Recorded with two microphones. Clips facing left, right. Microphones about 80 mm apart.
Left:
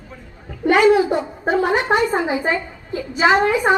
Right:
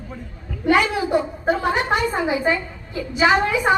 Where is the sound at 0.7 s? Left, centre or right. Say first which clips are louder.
Left 4 dB; left.